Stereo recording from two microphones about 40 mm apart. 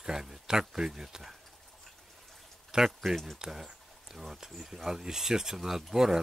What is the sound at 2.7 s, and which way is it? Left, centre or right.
Speech, centre.